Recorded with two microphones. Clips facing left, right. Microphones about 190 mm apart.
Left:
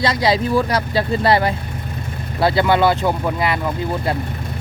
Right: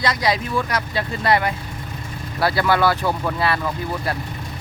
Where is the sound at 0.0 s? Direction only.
30° left (ahead or behind).